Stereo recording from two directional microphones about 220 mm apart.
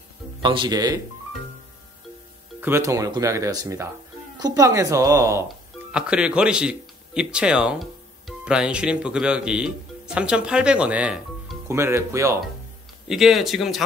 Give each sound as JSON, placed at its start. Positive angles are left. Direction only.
{"t": 0.4, "sound": "speech", "side_deg": -20}
{"t": 2.6, "sound": "speech", "side_deg": -10}
{"t": 13.1, "sound": "speech", "side_deg": 0}